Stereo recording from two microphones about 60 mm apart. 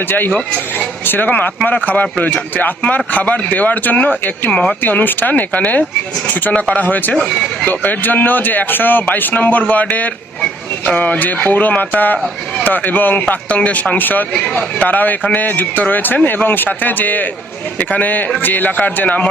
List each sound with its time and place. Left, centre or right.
0.1 s speech: left
0.3 s speech: left
1.0 s speech: left